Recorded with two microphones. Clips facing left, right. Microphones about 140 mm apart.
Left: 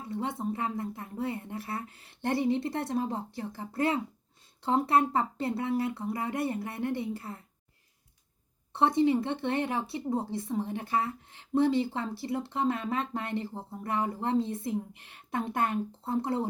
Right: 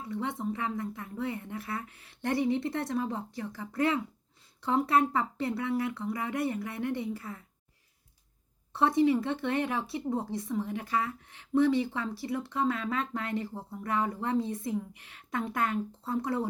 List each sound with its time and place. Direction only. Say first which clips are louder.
0.1 s a sound: left 1 dB; 25° left (ahead or behind)
0.4 s speech: left 1 dB; 40° left (ahead or behind)
0.8 s speech: left 1 dB; 30° left (ahead or behind)
8.7 s a woman's voice: even; 25° left (ahead or behind)
14.4 s a woman's voice: even; 15° right (ahead or behind)
15.3 s speech: left 1 dB; 25° left (ahead or behind)